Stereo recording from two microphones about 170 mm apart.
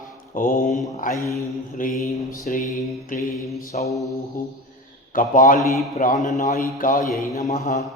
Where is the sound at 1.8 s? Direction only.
55° left (ahead or behind).